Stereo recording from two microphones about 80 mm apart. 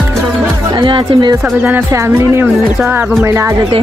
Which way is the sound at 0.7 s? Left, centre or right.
Right.